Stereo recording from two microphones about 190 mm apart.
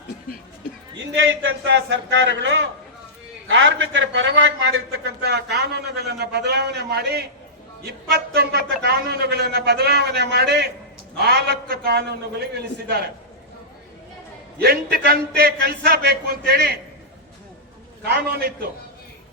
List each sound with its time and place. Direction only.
0.9 s a man's voice: 80° right; by 12.0 s 55° right (ahead or behind)
14.6 s a man's voice: 55° right (ahead or behind)
18.0 s a man's voice: 55° right (ahead or behind)